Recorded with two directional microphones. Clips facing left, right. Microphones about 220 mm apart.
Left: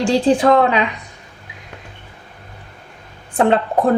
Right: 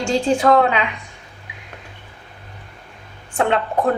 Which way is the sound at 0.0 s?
35° left (ahead or behind).